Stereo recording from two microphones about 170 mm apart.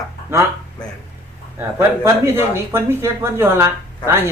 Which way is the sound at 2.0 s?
15° right (ahead or behind).